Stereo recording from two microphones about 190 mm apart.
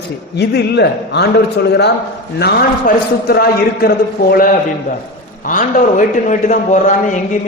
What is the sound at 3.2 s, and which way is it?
A man's voice, 55° left (ahead or behind).